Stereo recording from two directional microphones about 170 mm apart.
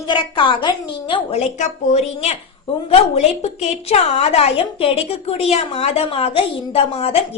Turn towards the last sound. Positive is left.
turn(degrees=35)  # may be behind; listen again after turning